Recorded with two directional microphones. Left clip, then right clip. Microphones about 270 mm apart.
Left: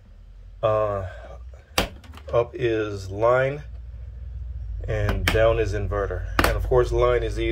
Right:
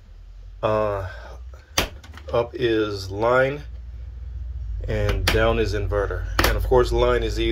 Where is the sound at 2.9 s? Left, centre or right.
Left.